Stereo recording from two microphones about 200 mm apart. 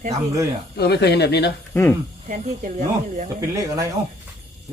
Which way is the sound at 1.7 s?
10° left (ahead or behind).